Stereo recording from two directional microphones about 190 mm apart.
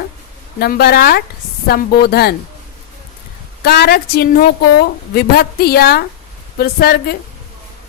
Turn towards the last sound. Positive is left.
turn(degrees=55)  # may be behind; listen again after turning